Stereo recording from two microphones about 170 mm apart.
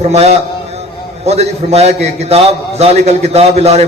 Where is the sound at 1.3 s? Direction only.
40° right (ahead or behind).